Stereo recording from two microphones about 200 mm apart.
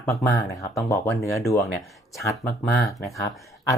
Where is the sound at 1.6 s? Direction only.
Centre (ahead or behind).